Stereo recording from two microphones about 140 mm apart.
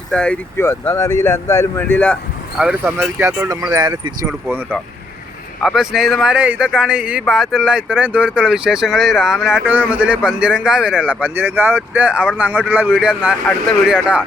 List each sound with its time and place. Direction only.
0.1 s speech: 10° left (ahead or behind)
3.2 s speech: 15° right (ahead or behind)
3.6 s speech: 30° right (ahead or behind)
5.6 s a man's voice: 5° right (ahead or behind)